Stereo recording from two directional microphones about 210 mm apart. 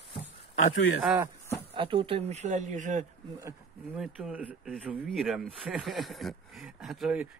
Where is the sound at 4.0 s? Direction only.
5° right (ahead or behind).